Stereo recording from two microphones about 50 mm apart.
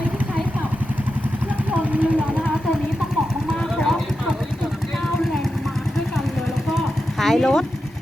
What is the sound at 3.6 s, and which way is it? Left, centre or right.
Vehicle, centre.